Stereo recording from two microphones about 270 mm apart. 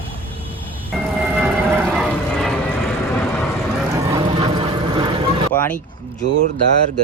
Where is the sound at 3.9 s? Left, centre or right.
Centre.